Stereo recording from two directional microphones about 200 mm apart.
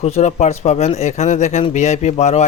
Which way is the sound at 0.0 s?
35° left (ahead or behind).